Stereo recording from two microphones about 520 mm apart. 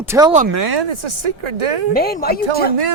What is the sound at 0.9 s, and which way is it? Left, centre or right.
Speech, right.